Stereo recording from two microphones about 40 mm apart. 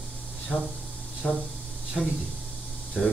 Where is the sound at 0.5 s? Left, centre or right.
Left.